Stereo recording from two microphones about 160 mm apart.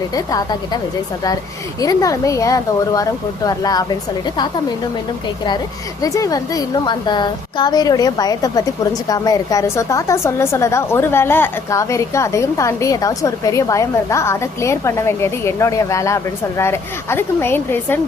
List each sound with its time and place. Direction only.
0.1 s a woman's voice: 25° left (ahead or behind)
1.8 s a woman's voice: 20° left (ahead or behind)
6.0 s a woman's voice: 20° left (ahead or behind)